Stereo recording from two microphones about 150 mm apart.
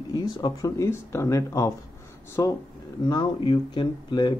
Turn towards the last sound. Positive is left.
turn(degrees=30)  # may be behind; listen again after turning